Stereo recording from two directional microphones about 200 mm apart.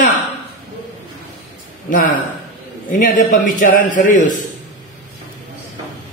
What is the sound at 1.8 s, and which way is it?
A man's voice, 40° left (ahead or behind).